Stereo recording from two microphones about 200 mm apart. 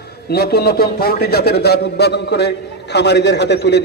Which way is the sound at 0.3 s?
50° left (ahead or behind).